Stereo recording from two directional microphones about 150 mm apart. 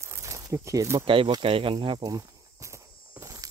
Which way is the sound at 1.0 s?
35° right (ahead or behind).